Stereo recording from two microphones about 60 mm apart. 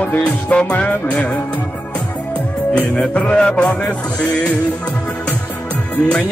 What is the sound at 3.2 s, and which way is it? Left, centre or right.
A man's voice, centre.